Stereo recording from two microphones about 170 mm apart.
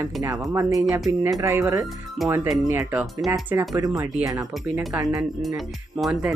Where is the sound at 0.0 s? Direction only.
20° right (ahead or behind).